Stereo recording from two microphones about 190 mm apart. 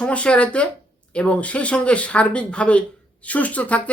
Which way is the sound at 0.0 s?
5° left (ahead or behind).